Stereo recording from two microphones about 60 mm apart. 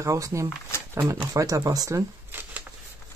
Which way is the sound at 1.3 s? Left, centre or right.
Right.